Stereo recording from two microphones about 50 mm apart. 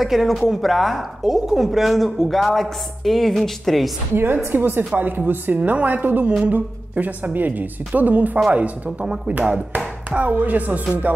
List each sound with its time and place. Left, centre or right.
0.0 s a woman's voice: centre
4.1 s a woman's voice: right
5.6 s a woman's voice: right
5.9 s speech: right
10.1 s speech: right